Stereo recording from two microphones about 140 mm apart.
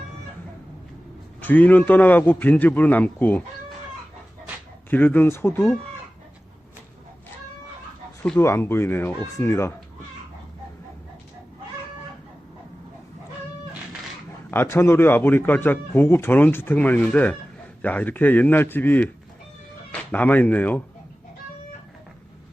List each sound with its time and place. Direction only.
1.4 s speech: 15° left (ahead or behind)
4.9 s speech: 15° left (ahead or behind)
8.4 s speech: 20° left (ahead or behind)
14.5 s speech: 15° left (ahead or behind)